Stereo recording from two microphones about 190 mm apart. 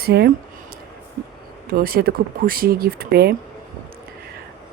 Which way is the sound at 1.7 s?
50° right (ahead or behind).